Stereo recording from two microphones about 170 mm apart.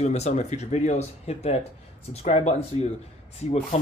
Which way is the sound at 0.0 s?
40° left (ahead or behind).